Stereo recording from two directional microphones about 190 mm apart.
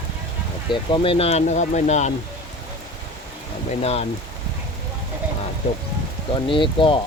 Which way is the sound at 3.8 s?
35° left (ahead or behind).